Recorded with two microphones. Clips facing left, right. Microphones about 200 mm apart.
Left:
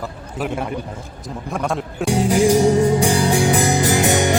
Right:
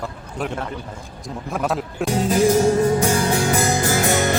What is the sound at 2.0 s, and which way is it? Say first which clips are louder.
Music: left 2 dB; 15° left (ahead or behind).